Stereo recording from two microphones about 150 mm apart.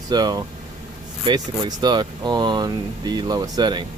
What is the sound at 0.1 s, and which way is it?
Speech, 25° right (ahead or behind).